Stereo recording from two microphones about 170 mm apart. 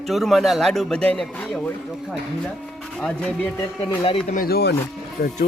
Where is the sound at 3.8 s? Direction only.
30° left (ahead or behind).